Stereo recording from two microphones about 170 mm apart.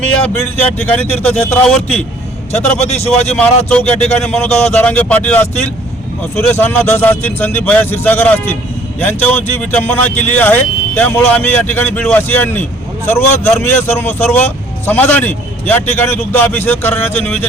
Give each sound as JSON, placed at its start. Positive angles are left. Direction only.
{"t": 0.2, "sound": "speech", "side_deg": 10}
{"t": 2.7, "sound": "speech", "side_deg": 40}
{"t": 3.3, "sound": "speech", "side_deg": 5}